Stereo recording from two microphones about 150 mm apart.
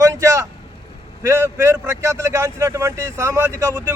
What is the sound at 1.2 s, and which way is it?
Speech, 15° right (ahead or behind).